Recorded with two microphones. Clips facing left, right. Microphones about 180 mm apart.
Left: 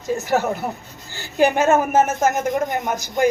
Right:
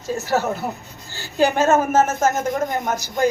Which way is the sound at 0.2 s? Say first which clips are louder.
Left 1 dB; 15° left (ahead or behind).